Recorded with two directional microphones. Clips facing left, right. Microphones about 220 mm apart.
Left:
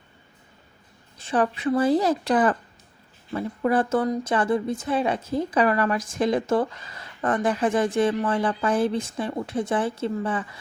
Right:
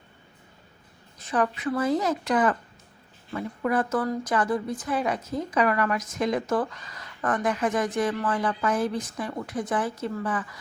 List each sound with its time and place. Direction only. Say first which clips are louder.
1.2 s a woman's voice: left 3 dB; 30° left (ahead or behind)